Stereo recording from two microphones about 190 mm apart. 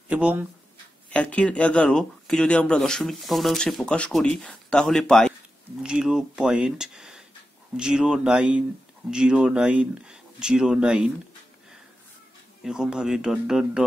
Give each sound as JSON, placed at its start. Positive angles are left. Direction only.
{"t": 0.1, "sound": "speech", "side_deg": -5}
{"t": 1.1, "sound": "speech", "side_deg": 5}
{"t": 12.6, "sound": "speech", "side_deg": -5}